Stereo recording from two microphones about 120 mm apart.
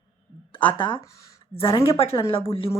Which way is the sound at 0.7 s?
45° left (ahead or behind).